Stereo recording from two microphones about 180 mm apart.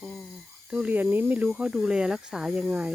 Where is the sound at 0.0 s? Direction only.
Centre (ahead or behind).